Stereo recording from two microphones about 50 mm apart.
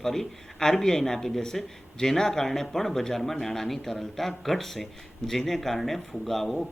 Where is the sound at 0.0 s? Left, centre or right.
Centre.